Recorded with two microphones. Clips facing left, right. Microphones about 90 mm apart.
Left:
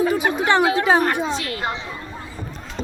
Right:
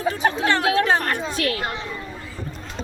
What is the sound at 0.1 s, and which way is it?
Speech, 15° left (ahead or behind).